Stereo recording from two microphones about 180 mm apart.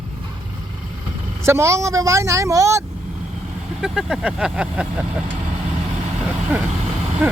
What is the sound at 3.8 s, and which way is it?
Speech, 5° right (ahead or behind).